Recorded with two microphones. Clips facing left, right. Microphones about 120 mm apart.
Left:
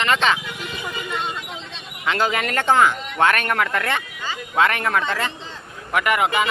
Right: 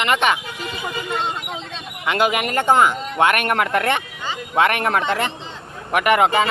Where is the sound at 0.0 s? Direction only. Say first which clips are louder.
Right 1 dB; 20° right (ahead or behind).